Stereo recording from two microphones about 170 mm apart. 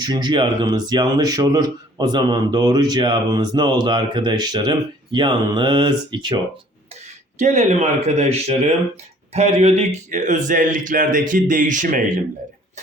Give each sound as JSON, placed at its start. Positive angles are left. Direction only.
{"t": 0.0, "sound": "speech", "side_deg": -25}
{"t": 7.3, "sound": "speech", "side_deg": -45}